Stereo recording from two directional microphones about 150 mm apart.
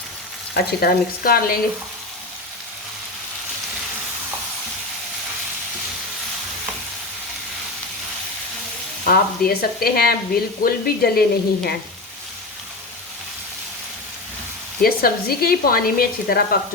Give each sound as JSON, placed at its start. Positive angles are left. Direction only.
{"t": 0.5, "sound": "speech", "side_deg": 85}
{"t": 9.0, "sound": "a woman's voice", "side_deg": 85}
{"t": 14.8, "sound": "speech", "side_deg": 85}